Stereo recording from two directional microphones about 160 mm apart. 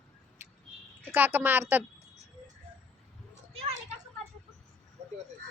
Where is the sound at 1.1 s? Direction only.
15° right (ahead or behind).